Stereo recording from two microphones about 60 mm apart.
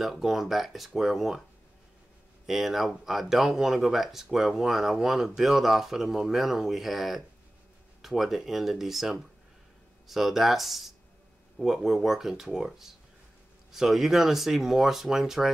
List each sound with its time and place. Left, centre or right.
0.0 s speech: centre
2.4 s speech: centre